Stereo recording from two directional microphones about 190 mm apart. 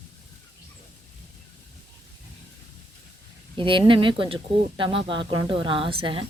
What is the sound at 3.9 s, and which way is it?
Speech, 25° right (ahead or behind).